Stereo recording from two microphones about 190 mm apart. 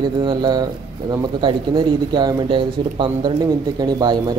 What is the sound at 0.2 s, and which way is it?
Speech, 25° right (ahead or behind).